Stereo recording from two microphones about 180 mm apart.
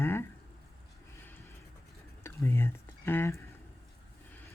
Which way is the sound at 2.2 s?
15° left (ahead or behind).